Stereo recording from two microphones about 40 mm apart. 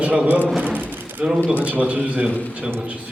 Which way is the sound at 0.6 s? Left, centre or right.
Right.